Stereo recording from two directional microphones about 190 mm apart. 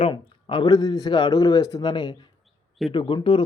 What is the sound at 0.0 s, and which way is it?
Speech, 25° left (ahead or behind).